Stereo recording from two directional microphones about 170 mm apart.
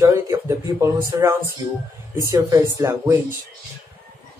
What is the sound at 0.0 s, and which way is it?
A man's voice, 15° right (ahead or behind).